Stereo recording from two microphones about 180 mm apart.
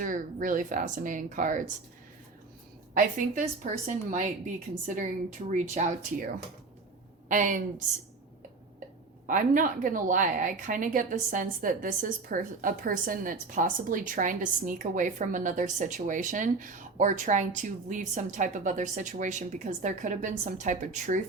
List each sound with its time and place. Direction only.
0.0 s a woman's voice: 45° right (ahead or behind)
2.9 s a woman's voice: 50° right (ahead or behind)
9.2 s a woman's voice: 50° right (ahead or behind)